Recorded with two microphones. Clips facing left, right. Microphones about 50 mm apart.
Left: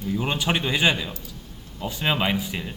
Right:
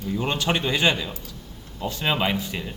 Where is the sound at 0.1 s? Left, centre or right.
Centre.